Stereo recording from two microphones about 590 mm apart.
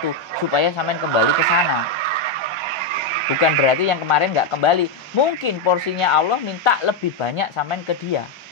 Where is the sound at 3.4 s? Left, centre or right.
Left.